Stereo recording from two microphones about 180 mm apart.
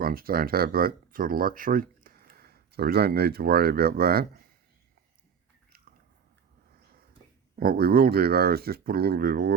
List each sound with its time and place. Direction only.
0.0 s speech: 55° right (ahead or behind)
7.6 s speech: 55° right (ahead or behind)